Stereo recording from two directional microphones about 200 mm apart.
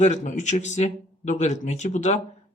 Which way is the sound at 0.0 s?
35° left (ahead or behind).